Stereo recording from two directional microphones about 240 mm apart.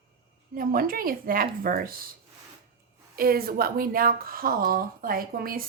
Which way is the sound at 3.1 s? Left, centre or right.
Right.